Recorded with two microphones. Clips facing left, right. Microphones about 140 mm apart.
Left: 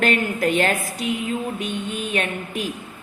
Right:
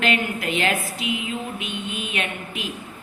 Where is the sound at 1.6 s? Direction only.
40° left (ahead or behind).